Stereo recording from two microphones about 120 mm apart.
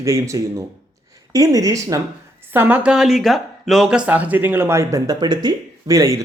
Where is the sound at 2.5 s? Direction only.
15° right (ahead or behind).